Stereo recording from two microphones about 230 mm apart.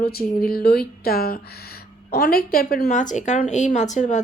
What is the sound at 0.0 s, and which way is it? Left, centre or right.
Speech, left.